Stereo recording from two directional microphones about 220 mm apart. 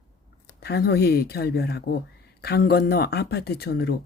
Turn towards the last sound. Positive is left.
turn(degrees=45)  # may be behind; listen again after turning